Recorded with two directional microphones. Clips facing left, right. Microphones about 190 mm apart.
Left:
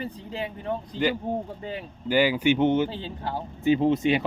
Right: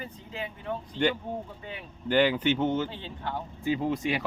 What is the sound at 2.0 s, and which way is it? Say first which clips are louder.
Speech: left 2 dB; 10° left (ahead or behind).